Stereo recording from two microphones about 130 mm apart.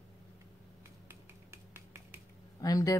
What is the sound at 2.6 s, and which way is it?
Speech, 25° left (ahead or behind).